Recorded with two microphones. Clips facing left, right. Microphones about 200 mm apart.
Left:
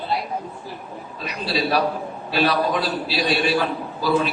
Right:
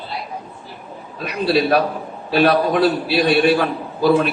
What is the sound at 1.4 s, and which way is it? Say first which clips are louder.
A man's voice: right 5 dB; 55° right (ahead or behind).